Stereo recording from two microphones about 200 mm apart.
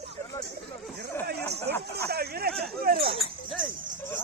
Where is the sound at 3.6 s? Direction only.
45° right (ahead or behind).